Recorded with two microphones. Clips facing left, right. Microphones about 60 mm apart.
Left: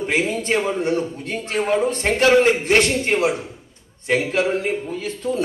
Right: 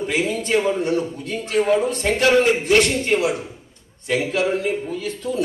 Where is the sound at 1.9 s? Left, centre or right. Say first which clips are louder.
Left 1 dB; left.